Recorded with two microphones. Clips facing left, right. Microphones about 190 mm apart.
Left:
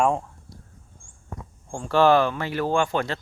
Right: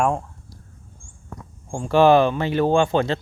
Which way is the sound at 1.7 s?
15° right (ahead or behind).